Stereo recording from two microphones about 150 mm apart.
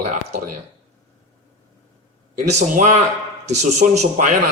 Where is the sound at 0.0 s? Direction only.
55° right (ahead or behind).